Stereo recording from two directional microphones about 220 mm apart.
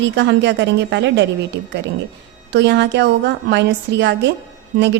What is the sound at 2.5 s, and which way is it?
A woman's voice, 50° right (ahead or behind).